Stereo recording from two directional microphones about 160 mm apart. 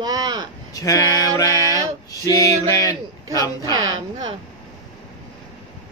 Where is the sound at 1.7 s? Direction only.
20° right (ahead or behind).